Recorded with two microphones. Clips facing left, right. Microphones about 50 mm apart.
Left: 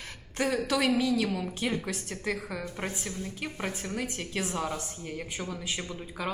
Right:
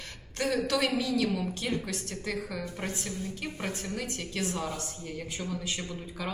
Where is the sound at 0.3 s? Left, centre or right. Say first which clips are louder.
Left 1 dB; centre.